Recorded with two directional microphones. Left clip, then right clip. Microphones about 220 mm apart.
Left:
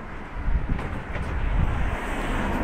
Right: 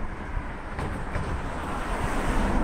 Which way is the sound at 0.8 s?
40° right (ahead or behind).